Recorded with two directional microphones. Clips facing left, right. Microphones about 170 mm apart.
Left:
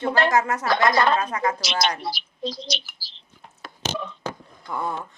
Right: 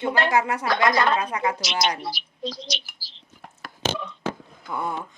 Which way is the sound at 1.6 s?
30° left (ahead or behind).